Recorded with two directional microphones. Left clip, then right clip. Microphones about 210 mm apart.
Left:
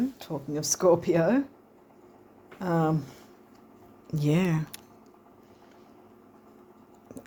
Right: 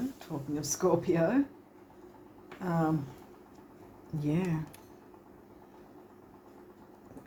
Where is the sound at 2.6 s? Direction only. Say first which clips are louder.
Left 5 dB; 55° left (ahead or behind).